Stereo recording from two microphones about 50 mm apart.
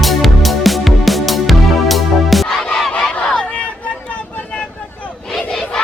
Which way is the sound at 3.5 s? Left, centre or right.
Left.